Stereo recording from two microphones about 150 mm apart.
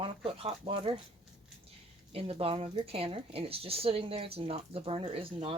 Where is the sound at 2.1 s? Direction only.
40° right (ahead or behind).